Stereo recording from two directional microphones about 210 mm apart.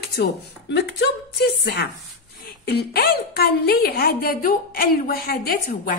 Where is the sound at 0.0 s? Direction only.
50° left (ahead or behind).